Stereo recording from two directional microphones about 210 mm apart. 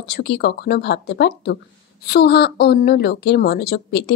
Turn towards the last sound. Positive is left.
turn(degrees=55)  # may be behind; listen again after turning